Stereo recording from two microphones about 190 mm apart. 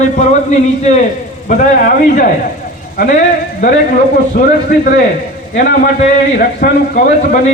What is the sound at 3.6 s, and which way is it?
A man's voice, 50° left (ahead or behind).